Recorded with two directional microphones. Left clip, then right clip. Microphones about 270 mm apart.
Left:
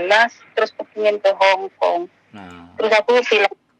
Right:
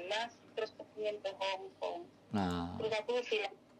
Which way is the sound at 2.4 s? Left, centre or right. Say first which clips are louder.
Right 1 dB; right.